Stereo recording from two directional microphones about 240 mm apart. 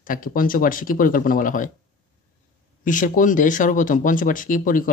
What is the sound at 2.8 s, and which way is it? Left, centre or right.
Speech, left.